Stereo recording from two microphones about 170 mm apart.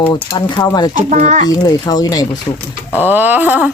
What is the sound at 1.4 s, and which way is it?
Speech, 25° left (ahead or behind).